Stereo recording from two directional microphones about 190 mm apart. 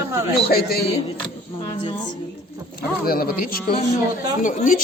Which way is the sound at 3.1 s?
50° left (ahead or behind).